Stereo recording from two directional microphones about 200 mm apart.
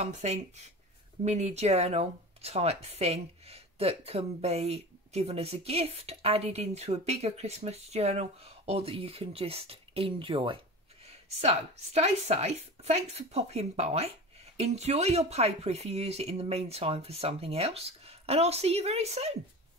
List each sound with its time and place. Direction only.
0.0 s speech: 35° right (ahead or behind)